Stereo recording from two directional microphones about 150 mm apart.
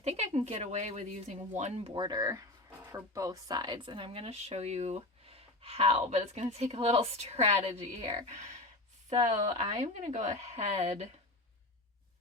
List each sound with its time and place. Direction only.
0.0 s a sound: 45° right (ahead or behind)
0.3 s speech: 45° right (ahead or behind)
1.9 s speech: 30° right (ahead or behind)